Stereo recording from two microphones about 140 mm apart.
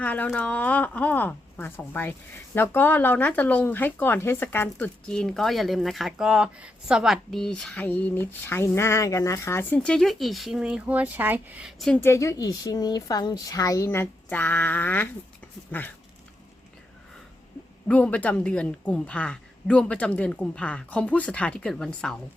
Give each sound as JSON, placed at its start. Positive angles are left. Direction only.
{"t": 0.0, "sound": "speech", "side_deg": 10}
{"t": 12.0, "sound": "a woman's voice", "side_deg": 20}
{"t": 17.8, "sound": "speech", "side_deg": 10}